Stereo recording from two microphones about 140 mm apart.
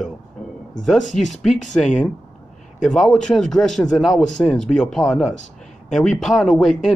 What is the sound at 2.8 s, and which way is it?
A man's voice, centre (ahead or behind).